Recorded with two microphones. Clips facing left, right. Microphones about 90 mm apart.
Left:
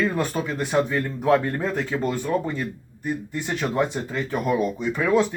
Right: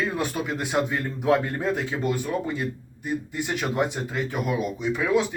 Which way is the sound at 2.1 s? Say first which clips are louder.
Left 3 dB; 10° right (ahead or behind).